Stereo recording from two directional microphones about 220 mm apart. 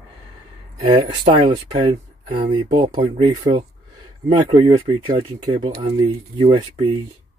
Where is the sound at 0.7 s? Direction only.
20° right (ahead or behind).